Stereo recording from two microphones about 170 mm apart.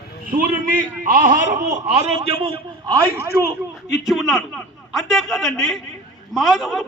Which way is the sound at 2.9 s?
20° right (ahead or behind).